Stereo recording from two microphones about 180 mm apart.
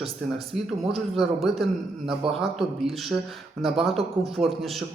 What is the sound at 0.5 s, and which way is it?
Speech, centre (ahead or behind).